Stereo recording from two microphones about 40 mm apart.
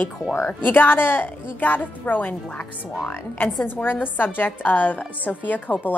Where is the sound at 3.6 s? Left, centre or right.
Left.